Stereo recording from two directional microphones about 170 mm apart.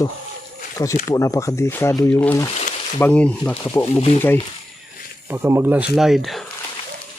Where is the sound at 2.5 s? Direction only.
45° left (ahead or behind).